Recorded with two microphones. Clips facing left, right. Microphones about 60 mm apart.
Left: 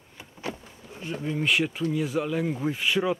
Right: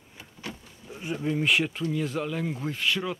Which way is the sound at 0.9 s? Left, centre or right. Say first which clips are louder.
Right 2 dB; centre.